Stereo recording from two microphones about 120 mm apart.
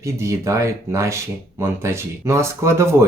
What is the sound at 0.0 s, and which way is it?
Speech, 25° right (ahead or behind).